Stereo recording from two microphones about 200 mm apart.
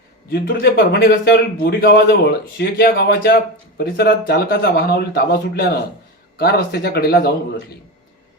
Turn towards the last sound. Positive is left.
turn(degrees=50)  # may be behind; listen again after turning